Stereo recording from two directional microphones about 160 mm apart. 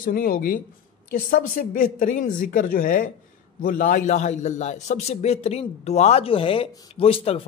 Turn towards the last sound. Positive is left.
turn(degrees=35)  # may be behind; listen again after turning